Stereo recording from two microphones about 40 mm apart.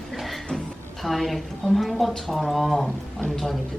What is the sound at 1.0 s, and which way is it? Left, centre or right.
A woman's voice, centre.